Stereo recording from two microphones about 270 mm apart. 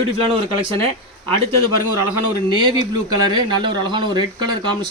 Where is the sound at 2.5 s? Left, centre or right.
Centre.